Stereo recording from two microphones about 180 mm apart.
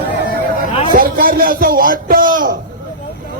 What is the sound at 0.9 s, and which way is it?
Speech, 55° right (ahead or behind).